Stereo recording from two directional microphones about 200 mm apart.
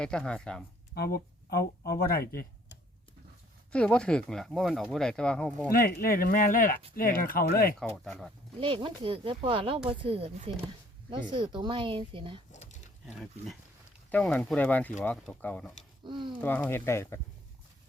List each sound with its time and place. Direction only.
0.0 s speech: 5° left (ahead or behind)
0.9 s speech: 50° left (ahead or behind)
3.7 s speech: 5° left (ahead or behind)
5.7 s speech: 50° left (ahead or behind)
8.0 s speech: centre (ahead or behind)
8.6 s speech: 25° right (ahead or behind)
12.5 s a sound: 35° left (ahead or behind)
13.1 s speech: centre (ahead or behind)
16.0 s speech: 25° right (ahead or behind)
16.4 s speech: 10° left (ahead or behind)